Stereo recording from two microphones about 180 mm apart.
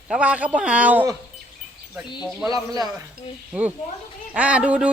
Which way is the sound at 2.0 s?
25° left (ahead or behind).